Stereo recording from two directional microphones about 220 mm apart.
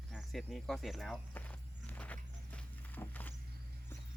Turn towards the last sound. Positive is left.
turn(degrees=10)  # may be behind; listen again after turning